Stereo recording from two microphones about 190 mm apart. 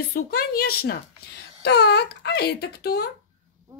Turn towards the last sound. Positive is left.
turn(degrees=55)  # may be behind; listen again after turning